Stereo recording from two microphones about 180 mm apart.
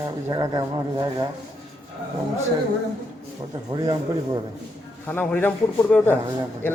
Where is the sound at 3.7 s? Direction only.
20° right (ahead or behind).